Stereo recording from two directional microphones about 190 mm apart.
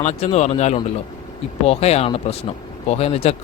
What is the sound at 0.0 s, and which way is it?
Speech, 35° left (ahead or behind).